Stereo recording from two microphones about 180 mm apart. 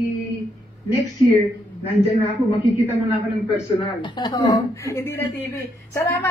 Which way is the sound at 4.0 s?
20° left (ahead or behind).